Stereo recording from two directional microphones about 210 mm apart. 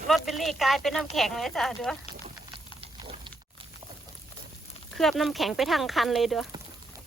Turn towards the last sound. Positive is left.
turn(degrees=0)  # may be behind; listen again after turning